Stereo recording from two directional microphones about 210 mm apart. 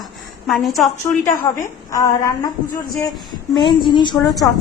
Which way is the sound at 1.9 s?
15° left (ahead or behind).